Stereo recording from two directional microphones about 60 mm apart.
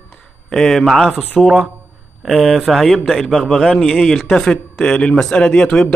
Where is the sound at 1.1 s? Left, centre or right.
Left.